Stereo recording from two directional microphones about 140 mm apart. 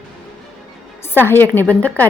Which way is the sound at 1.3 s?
15° left (ahead or behind).